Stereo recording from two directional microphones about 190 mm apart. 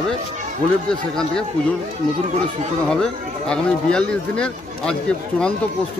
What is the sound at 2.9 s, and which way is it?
Speech, 5° left (ahead or behind).